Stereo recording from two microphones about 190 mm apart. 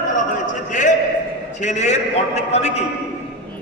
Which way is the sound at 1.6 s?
40° left (ahead or behind).